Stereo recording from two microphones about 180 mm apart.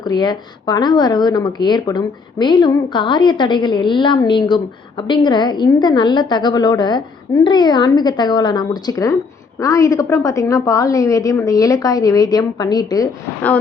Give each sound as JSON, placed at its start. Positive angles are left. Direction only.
{"t": 0.0, "sound": "speech", "side_deg": 25}